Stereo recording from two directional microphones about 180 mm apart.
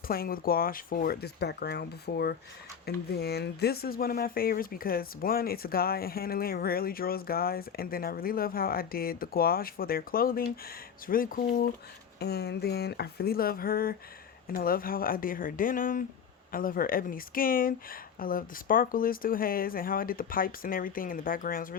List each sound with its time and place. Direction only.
0.1 s speech: 55° left (ahead or behind)
12.2 s speech: 65° left (ahead or behind)